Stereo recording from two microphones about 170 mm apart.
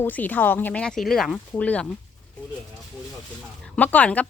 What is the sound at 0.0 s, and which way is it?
A woman's voice, 10° left (ahead or behind).